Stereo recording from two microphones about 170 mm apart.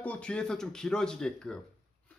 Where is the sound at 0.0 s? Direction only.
5° left (ahead or behind).